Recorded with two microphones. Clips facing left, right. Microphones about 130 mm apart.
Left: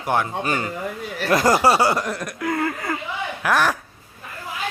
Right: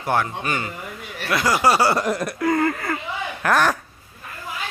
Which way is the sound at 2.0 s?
10° right (ahead or behind).